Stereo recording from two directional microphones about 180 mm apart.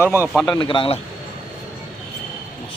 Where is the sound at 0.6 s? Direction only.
30° left (ahead or behind).